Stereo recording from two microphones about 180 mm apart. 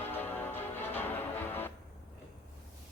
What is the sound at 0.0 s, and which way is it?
Music, 10° left (ahead or behind).